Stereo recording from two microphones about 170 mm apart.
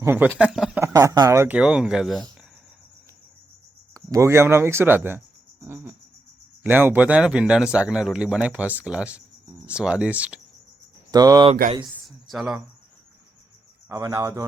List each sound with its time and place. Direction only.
0.0 s speech: 15° right (ahead or behind)
0.8 s speech: 20° right (ahead or behind); by 2.2 s centre (ahead or behind)
3.9 s speech: 20° right (ahead or behind)
11.1 s cricket: 20° right (ahead or behind)
12.0 s a sound: centre (ahead or behind)
13.8 s cricket: 15° right (ahead or behind)